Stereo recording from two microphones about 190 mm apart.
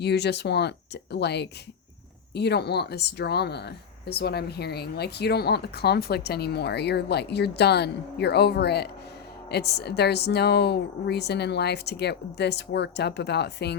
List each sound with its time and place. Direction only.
0.0 s speech: 60° left (ahead or behind)